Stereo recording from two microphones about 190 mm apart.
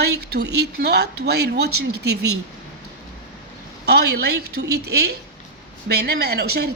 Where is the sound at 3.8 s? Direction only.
60° right (ahead or behind).